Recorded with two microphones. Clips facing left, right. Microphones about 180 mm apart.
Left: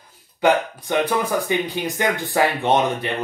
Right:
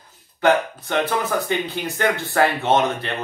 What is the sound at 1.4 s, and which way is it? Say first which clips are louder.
Speech: left 2 dB; 15° left (ahead or behind).